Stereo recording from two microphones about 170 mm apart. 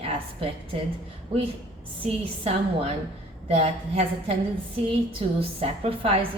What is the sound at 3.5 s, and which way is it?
A woman's voice, 35° right (ahead or behind).